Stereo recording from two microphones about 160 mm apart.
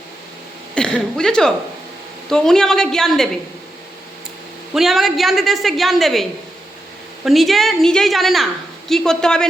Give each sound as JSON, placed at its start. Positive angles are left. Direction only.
{"t": 0.7, "sound": "a woman's voice", "side_deg": 5}
{"t": 4.7, "sound": "a woman's voice", "side_deg": 0}
{"t": 7.3, "sound": "a woman's voice", "side_deg": 0}